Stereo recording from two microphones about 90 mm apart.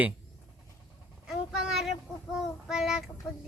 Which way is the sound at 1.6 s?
5° right (ahead or behind).